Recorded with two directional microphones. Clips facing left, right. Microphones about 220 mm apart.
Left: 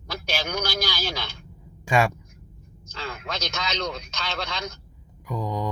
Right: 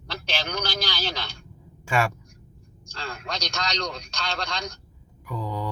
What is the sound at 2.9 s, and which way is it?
A man's voice, 5° left (ahead or behind).